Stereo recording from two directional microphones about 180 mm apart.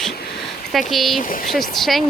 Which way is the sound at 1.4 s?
Centre (ahead or behind).